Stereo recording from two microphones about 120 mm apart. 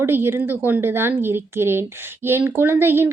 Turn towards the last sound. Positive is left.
turn(degrees=-20)  # may be behind; listen again after turning